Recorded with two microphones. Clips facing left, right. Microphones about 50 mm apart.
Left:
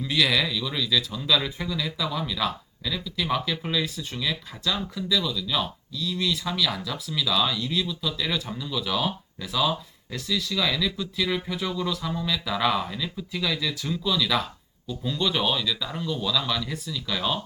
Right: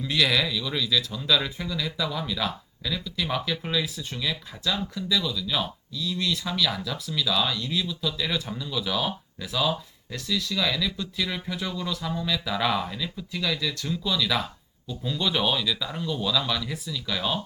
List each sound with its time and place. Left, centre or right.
0.0 s speech: centre